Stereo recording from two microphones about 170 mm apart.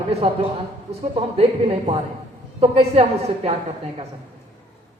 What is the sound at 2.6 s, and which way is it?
Speech, 35° right (ahead or behind).